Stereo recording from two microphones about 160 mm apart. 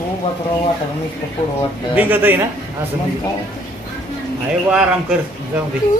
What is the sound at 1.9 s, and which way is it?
Speech, 10° right (ahead or behind).